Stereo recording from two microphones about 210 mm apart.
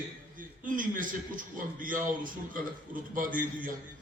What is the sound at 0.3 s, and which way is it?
A man's voice, 40° right (ahead or behind).